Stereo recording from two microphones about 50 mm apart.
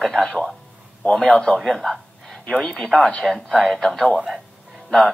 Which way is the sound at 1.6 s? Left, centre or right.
Centre.